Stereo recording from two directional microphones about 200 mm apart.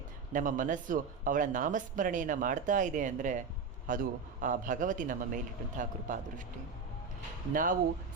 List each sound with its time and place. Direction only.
0.3 s speech: 40° right (ahead or behind)
7.5 s speech: 45° right (ahead or behind)